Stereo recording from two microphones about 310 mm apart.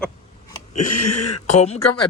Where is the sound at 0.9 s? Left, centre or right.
Left.